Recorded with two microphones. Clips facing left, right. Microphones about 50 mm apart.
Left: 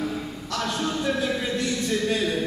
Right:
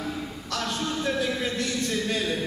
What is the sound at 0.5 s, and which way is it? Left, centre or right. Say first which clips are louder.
A man's voice: left 3 dB; centre.